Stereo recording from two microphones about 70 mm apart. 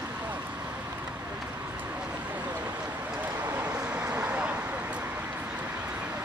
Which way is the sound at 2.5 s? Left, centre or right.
Right.